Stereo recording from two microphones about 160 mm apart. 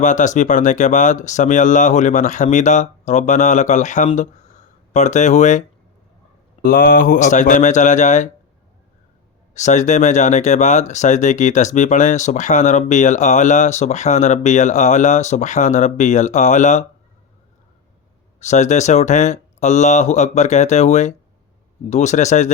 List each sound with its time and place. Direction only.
0.0 s speech: 50° left (ahead or behind)
6.6 s speech: 65° left (ahead or behind); by 8.3 s 50° left (ahead or behind)
9.6 s speech: 50° left (ahead or behind)
18.3 s speech: 45° left (ahead or behind)